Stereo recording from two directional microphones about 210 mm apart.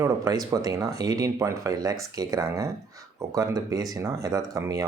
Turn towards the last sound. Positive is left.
turn(degrees=-15)  # may be behind; listen again after turning